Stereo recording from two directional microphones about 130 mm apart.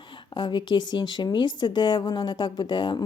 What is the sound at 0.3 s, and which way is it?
A woman's voice, 35° left (ahead or behind).